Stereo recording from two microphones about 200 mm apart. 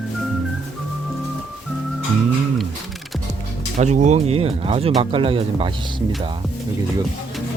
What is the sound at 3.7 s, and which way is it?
Speech, 35° right (ahead or behind).